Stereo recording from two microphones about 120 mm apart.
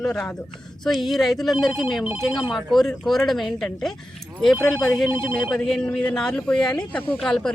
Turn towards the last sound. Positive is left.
turn(degrees=5)  # may be behind; listen again after turning